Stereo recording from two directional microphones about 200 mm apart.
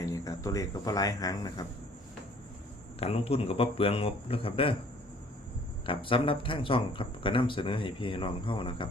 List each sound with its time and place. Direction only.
0.0 s speech: 15° left (ahead or behind)
3.0 s speech: 30° left (ahead or behind)
5.8 s speech: 25° left (ahead or behind)